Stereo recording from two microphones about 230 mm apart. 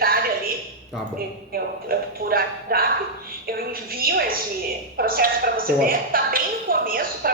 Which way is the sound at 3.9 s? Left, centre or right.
Right.